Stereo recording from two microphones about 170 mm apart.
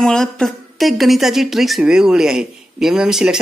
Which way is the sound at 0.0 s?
5° left (ahead or behind).